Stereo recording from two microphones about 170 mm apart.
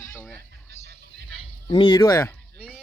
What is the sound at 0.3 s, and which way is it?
Mechanisms, 70° right (ahead or behind).